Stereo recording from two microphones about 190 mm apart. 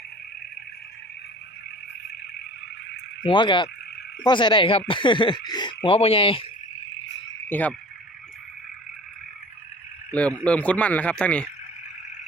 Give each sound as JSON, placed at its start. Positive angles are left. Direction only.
{"t": 3.2, "sound": "speech", "side_deg": 25}
{"t": 7.4, "sound": "frog", "side_deg": 10}
{"t": 10.2, "sound": "speech", "side_deg": 5}